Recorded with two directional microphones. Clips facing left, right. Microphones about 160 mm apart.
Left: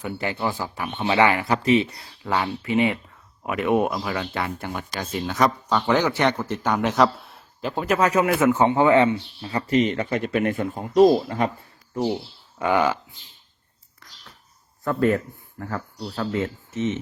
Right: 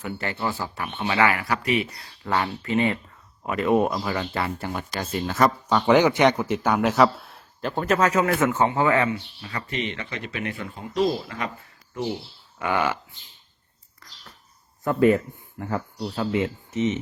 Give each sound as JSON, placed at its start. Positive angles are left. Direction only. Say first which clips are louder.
{"t": 0.0, "sound": "speech", "louder": "left 2 dB", "side_deg": 15}
{"t": 2.2, "sound": "speech", "louder": "left 1 dB", "side_deg": 10}
{"t": 5.9, "sound": "speech", "louder": "right 4 dB", "side_deg": -15}
{"t": 12.5, "sound": "a sound", "louder": "left 4 dB", "side_deg": 15}
{"t": 14.9, "sound": "speech", "louder": "right 3 dB", "side_deg": -5}
{"t": 15.5, "sound": "speech", "louder": "right 2 dB", "side_deg": -15}